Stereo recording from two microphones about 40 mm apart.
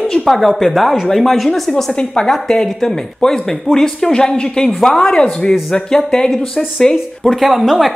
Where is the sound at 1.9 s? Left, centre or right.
Centre.